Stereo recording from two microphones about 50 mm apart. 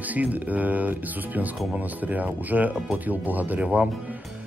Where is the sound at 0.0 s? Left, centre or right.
Right.